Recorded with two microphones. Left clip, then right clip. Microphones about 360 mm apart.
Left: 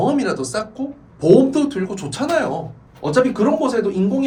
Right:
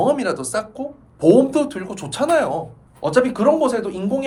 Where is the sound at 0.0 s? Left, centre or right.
Right.